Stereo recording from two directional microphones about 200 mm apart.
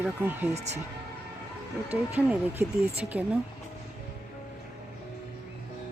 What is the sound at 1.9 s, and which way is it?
Speech, 10° right (ahead or behind).